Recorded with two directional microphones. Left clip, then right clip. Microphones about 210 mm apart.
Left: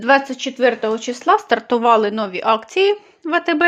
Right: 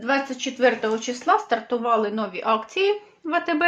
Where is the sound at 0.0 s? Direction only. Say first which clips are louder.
Left 8 dB; 45° left (ahead or behind).